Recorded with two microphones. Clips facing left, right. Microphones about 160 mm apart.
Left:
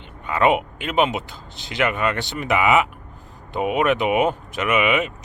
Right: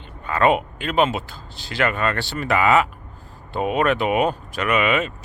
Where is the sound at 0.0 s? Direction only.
20° left (ahead or behind).